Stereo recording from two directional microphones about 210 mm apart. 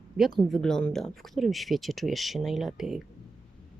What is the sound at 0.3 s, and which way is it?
Speech, centre (ahead or behind).